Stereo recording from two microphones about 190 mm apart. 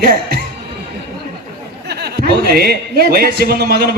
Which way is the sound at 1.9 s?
60° right (ahead or behind).